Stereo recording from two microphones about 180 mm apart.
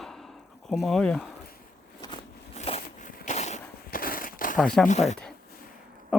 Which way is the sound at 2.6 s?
35° left (ahead or behind).